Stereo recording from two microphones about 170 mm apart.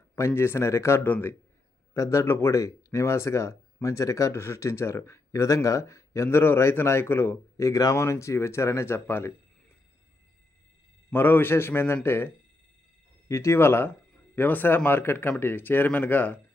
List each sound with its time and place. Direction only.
0.2 s speech: 15° left (ahead or behind)
11.1 s speech: 10° left (ahead or behind)